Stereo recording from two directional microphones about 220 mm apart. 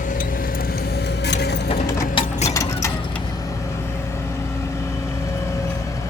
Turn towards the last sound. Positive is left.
turn(degrees=15)  # may be behind; listen again after turning